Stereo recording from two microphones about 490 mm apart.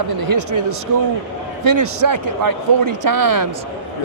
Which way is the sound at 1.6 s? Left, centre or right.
Right.